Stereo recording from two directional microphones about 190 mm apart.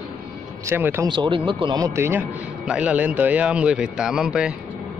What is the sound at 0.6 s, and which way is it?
Speech, 10° right (ahead or behind).